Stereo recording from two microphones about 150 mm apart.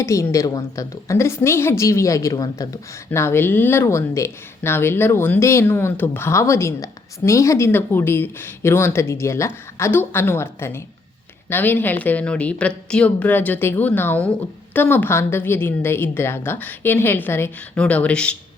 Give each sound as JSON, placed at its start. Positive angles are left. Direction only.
{"t": 0.0, "sound": "a woman's voice", "side_deg": 20}